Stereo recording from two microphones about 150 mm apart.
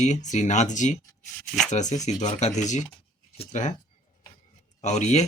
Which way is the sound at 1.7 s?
50° left (ahead or behind).